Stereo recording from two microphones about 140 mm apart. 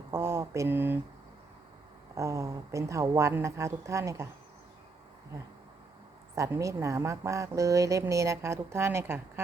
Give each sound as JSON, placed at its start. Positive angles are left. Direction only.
{"t": 0.1, "sound": "a sound", "side_deg": -20}
{"t": 2.1, "sound": "speech", "side_deg": -20}
{"t": 6.3, "sound": "speech", "side_deg": -20}